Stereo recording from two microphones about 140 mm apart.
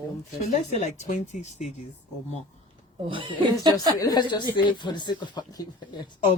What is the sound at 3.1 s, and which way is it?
Speech, 35° right (ahead or behind).